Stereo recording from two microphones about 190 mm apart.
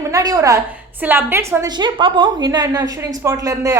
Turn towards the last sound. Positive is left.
turn(degrees=-15)  # may be behind; listen again after turning